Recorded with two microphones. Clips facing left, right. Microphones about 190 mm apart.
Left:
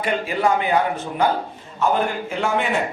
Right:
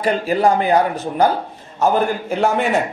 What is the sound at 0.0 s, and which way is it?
A man's voice, 40° right (ahead or behind).